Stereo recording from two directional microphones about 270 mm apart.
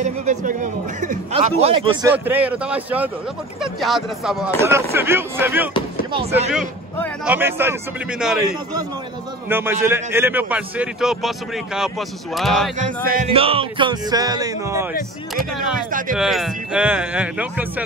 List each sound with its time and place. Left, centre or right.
0.0 s a man's voice: right
2.0 s a man's voice: centre
4.6 s music: centre
6.5 s a man's voice: centre
9.5 s a man's voice: centre
12.7 s music: right; by 14.9 s centre
15.9 s a man's voice: right
16.2 s a man's voice: centre